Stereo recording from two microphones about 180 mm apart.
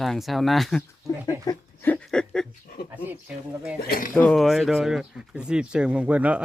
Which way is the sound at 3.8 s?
55° left (ahead or behind).